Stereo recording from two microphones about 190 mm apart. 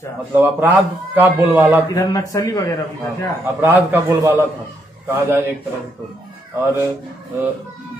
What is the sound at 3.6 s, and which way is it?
Speech, 10° right (ahead or behind).